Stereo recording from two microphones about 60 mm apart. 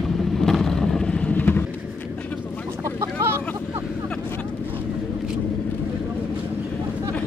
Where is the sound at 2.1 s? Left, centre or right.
Left.